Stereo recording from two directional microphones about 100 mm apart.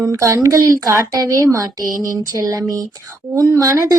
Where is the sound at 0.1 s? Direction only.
30° right (ahead or behind).